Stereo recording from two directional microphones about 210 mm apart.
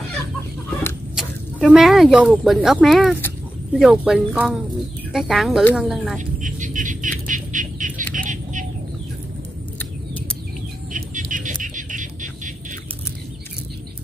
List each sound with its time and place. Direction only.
1.1 s speech: centre (ahead or behind)
6.1 s squawk: 40° right (ahead or behind)
10.9 s a sound: 40° right (ahead or behind)